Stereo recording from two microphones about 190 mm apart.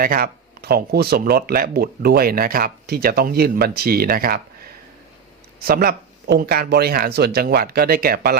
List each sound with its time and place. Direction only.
0.0 s speech: 50° right (ahead or behind)